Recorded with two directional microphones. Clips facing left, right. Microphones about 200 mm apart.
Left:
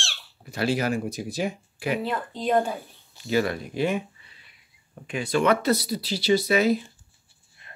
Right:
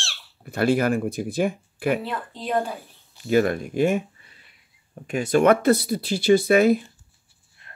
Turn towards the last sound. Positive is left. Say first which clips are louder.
# right 4 dB
turn(degrees=-50)  # may be behind; listen again after turning